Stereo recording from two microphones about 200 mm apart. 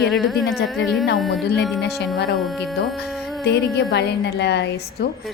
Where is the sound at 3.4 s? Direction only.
60° left (ahead or behind).